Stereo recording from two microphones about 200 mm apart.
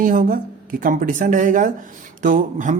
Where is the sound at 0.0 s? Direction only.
40° right (ahead or behind).